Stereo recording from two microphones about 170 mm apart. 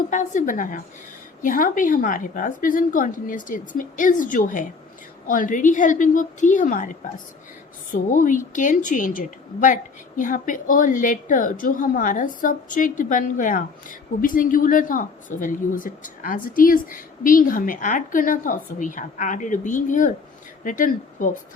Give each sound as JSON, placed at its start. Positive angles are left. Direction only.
{"t": 0.1, "sound": "speech", "side_deg": 45}
{"t": 7.9, "sound": "speech", "side_deg": 50}